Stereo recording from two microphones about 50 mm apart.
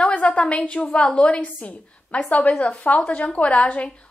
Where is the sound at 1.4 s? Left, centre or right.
Left.